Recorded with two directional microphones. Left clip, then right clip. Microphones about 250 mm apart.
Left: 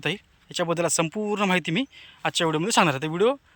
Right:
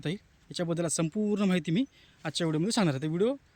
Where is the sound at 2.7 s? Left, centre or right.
Centre.